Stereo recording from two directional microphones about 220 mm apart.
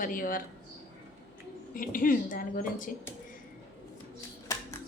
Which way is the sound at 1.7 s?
40° left (ahead or behind).